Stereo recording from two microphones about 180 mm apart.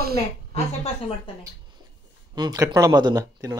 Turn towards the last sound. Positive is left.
turn(degrees=-20)  # may be behind; listen again after turning